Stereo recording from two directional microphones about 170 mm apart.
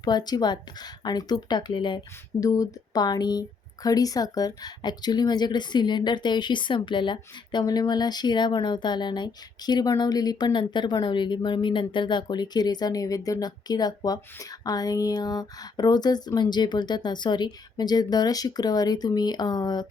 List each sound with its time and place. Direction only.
0.0 s speech: 25° left (ahead or behind)